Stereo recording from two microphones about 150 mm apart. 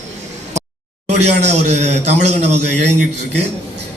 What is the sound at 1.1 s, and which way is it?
A man's voice, 50° right (ahead or behind).